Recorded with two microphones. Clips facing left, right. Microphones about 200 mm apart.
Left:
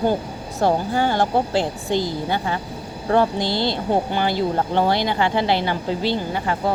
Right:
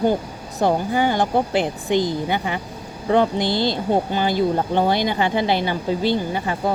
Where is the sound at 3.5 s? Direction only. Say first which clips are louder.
Right 1 dB; 45° right (ahead or behind).